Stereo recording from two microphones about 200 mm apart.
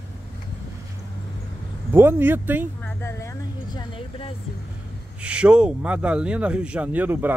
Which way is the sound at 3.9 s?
25° left (ahead or behind).